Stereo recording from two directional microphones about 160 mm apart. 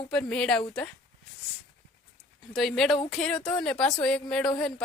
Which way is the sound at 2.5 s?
Centre (ahead or behind).